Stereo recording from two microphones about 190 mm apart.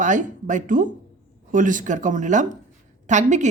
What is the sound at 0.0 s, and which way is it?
Speech, 40° right (ahead or behind).